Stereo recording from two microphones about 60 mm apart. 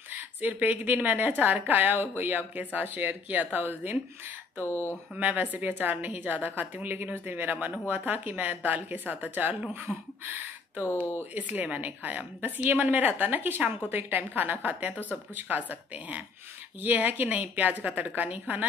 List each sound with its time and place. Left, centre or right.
0.1 s a woman's voice: right
4.6 s speech: left
5.1 s a woman's voice: right
11.3 s a woman's voice: right